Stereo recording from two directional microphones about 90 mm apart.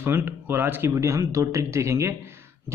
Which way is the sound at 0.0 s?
20° right (ahead or behind).